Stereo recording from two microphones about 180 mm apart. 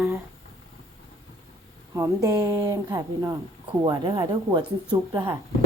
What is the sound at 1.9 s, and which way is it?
Speech, 20° right (ahead or behind).